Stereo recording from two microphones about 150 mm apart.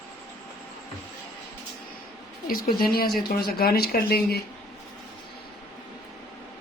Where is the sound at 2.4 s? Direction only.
75° left (ahead or behind).